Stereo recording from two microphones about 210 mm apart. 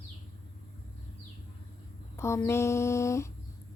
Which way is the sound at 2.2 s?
15° left (ahead or behind).